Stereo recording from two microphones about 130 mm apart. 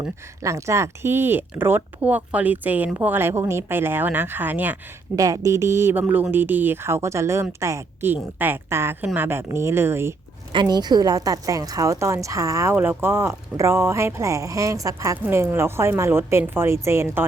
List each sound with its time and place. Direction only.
0.4 s speech: 25° right (ahead or behind)
5.1 s a woman's voice: 25° right (ahead or behind)
10.5 s a woman's voice: 35° right (ahead or behind)